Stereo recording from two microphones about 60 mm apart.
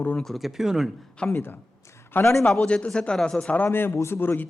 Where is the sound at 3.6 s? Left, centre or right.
Left.